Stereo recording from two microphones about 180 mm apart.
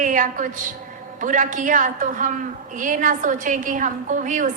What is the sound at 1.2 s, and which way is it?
A woman's voice, 45° right (ahead or behind).